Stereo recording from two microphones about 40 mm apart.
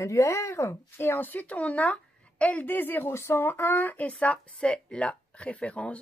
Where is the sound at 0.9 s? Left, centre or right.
Left.